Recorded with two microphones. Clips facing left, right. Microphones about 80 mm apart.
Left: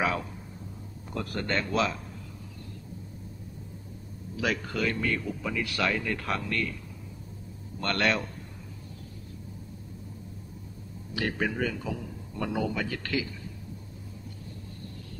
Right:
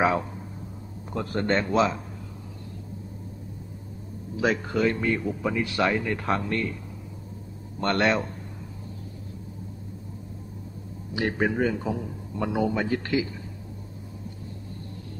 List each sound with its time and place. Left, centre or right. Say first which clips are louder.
0.0 s a sound: right 6 dB; right
1.1 s a man's voice: right 5 dB; right
4.4 s a man's voice: right 6 dB; right
7.8 s a man's voice: right 4 dB; right
11.1 s a man's voice: right 5 dB; right